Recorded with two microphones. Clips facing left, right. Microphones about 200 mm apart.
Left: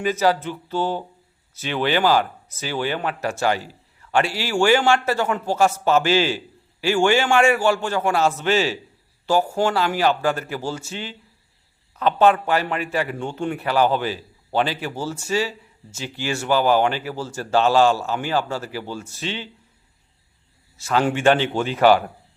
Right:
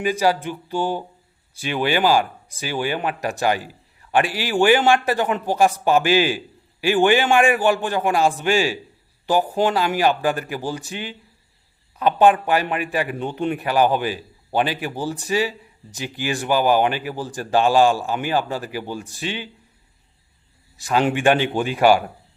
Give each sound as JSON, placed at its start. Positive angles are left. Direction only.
{"t": 0.0, "sound": "a man's voice", "side_deg": -10}
{"t": 20.7, "sound": "a man's voice", "side_deg": -15}